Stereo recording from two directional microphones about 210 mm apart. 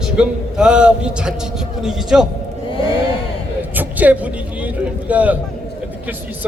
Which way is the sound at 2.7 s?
25° left (ahead or behind).